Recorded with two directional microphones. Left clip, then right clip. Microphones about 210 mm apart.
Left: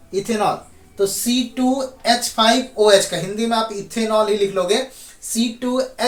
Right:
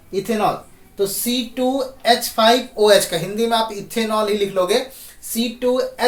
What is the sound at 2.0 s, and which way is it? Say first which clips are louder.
Speech: right 2 dB; 20° right (ahead or behind).